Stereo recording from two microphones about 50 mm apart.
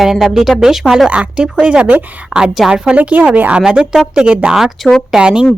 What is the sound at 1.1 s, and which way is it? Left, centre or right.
Speech, right.